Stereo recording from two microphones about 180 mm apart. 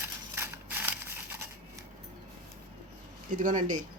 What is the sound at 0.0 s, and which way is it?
Scissors, 10° right (ahead or behind).